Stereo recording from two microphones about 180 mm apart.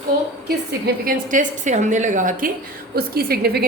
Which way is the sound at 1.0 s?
50° right (ahead or behind).